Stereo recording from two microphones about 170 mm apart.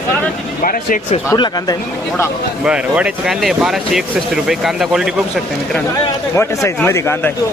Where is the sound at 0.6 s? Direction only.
55° left (ahead or behind).